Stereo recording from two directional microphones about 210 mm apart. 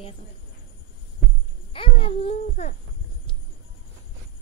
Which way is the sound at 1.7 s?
25° left (ahead or behind).